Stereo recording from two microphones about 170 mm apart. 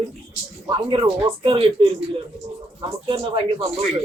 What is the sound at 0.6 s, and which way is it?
Speech, 30° right (ahead or behind).